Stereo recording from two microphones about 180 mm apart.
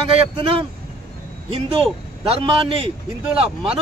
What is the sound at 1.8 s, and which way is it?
Speech, 30° right (ahead or behind).